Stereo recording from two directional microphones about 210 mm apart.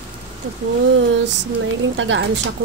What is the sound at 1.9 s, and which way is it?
Speech, 60° right (ahead or behind).